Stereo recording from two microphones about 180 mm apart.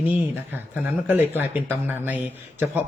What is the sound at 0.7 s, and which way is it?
Speech, 10° right (ahead or behind).